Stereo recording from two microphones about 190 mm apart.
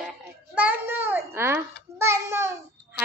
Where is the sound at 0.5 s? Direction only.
10° right (ahead or behind).